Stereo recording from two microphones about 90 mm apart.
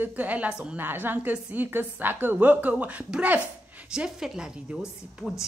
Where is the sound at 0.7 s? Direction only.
25° right (ahead or behind).